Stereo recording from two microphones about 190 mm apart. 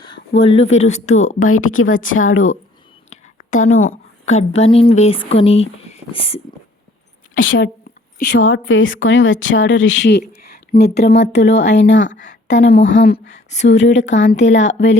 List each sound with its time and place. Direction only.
0.3 s speech: 30° left (ahead or behind)
1.5 s speech: 90° left
3.1 s a woman's voice: 40° left (ahead or behind)
7.3 s speech: 45° left (ahead or behind)
8.2 s a woman's voice: 75° left (ahead or behind)
12.1 s a woman's voice: 40° left (ahead or behind)
12.5 s a woman's voice: 70° left (ahead or behind)